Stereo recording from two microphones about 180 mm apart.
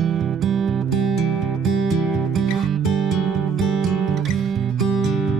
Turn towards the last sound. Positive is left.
turn(degrees=0)  # may be behind; listen again after turning